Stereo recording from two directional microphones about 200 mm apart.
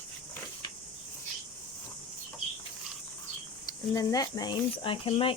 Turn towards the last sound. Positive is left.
turn(degrees=25)  # may be behind; listen again after turning